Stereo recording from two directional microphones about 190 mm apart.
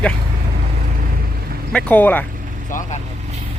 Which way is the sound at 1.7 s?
5° left (ahead or behind).